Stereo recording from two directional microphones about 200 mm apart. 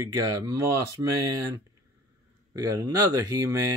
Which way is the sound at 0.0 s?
15° right (ahead or behind).